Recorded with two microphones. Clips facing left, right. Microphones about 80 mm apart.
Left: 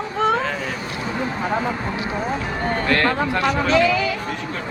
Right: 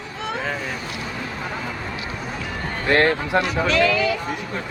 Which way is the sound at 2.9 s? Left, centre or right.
Right.